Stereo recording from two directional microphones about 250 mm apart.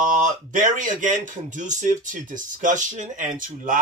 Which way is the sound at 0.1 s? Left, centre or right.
Right.